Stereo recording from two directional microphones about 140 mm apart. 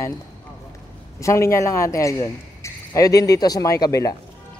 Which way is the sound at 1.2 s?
20° left (ahead or behind).